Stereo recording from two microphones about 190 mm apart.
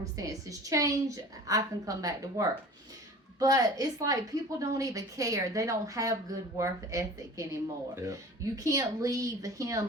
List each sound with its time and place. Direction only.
0.2 s a woman's voice: 15° right (ahead or behind)